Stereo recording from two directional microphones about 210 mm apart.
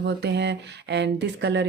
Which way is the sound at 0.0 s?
55° right (ahead or behind).